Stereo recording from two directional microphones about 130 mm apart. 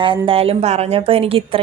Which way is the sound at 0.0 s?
45° right (ahead or behind).